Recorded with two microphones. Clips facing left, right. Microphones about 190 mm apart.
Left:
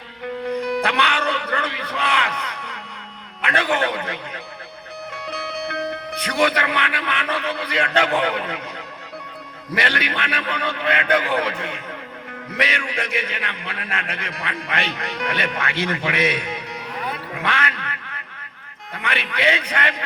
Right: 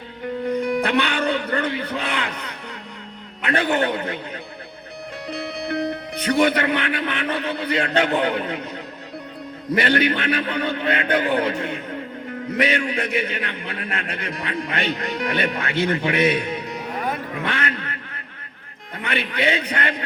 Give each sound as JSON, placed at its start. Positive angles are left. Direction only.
{"t": 0.5, "sound": "music", "side_deg": -55}
{"t": 1.2, "sound": "a sound", "side_deg": -30}
{"t": 3.5, "sound": "a man's voice", "side_deg": -30}
{"t": 5.3, "sound": "speech", "side_deg": -35}
{"t": 9.8, "sound": "a man's voice", "side_deg": -30}
{"t": 17.5, "sound": "quack", "side_deg": -30}
{"t": 18.9, "sound": "a man's voice", "side_deg": -30}